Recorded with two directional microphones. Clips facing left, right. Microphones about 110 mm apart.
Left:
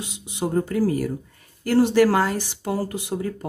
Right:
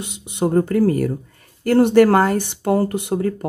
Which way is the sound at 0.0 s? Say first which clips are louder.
Right 6 dB; 60° right (ahead or behind).